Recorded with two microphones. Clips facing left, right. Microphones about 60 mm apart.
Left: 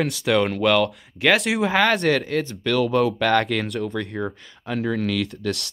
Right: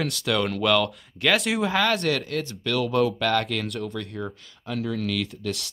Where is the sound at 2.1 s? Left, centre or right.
Left.